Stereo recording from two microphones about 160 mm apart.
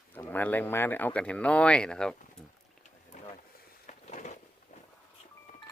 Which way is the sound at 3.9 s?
50° left (ahead or behind).